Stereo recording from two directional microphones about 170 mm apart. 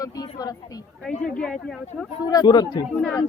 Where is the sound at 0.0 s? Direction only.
20° left (ahead or behind).